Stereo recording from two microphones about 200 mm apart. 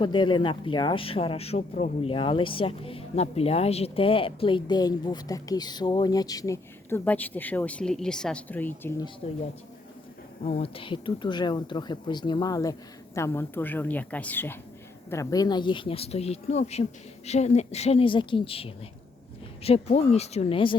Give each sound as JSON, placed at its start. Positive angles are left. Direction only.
{"t": 0.0, "sound": "speech", "side_deg": 20}
{"t": 9.2, "sound": "a woman's voice", "side_deg": 30}
{"t": 10.4, "sound": "a woman's voice", "side_deg": 30}